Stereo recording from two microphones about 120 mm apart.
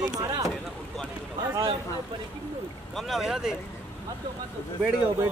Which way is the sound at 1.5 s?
50° right (ahead or behind).